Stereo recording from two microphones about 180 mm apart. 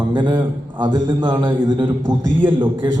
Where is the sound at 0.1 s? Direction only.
25° right (ahead or behind).